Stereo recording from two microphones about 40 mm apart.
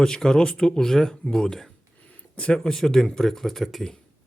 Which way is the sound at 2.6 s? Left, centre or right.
Centre.